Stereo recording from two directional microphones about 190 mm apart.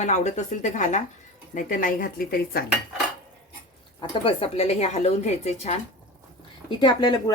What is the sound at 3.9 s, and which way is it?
Speech, 30° left (ahead or behind).